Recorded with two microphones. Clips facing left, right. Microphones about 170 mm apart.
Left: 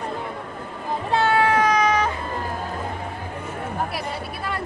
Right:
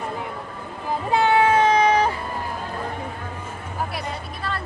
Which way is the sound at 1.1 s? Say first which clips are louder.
Right 2 dB; 20° right (ahead or behind).